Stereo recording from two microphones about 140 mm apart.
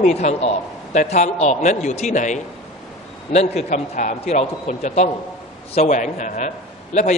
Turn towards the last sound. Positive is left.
turn(degrees=55)  # may be behind; listen again after turning